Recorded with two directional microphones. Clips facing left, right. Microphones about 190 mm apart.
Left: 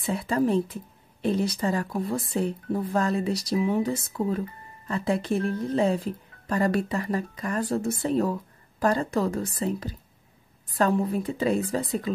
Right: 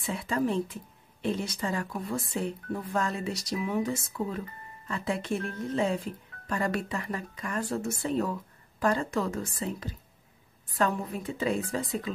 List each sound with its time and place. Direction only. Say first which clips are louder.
0.0 s speech: left 4 dB; 35° left (ahead or behind)